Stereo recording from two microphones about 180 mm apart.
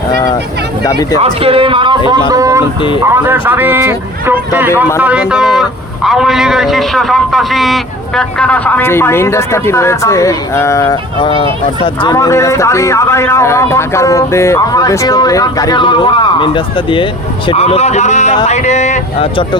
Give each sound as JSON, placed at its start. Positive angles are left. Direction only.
{"t": 0.9, "sound": "speech", "side_deg": 20}
{"t": 1.2, "sound": "a man's voice", "side_deg": -30}